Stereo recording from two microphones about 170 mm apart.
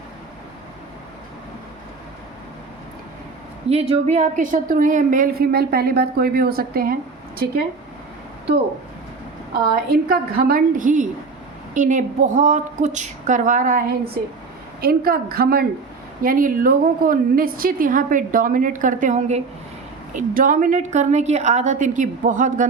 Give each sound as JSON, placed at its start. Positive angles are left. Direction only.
{"t": 3.7, "sound": "a woman's voice", "side_deg": -40}
{"t": 9.7, "sound": "a woman's voice", "side_deg": -60}
{"t": 14.8, "sound": "a woman's voice", "side_deg": -60}